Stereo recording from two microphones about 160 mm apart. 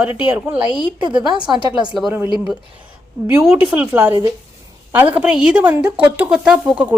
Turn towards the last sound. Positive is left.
turn(degrees=-10)  # may be behind; listen again after turning